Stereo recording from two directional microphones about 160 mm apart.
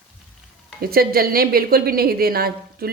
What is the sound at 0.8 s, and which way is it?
A woman's voice, 70° right (ahead or behind).